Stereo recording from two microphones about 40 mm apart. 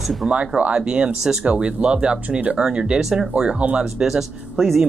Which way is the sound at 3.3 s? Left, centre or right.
Right.